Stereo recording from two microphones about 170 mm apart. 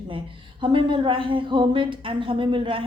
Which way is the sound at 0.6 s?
30° right (ahead or behind).